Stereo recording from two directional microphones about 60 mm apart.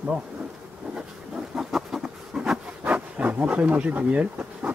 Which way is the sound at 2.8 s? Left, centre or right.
Right.